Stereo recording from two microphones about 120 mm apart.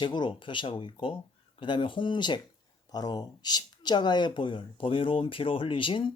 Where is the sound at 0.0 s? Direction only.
40° left (ahead or behind).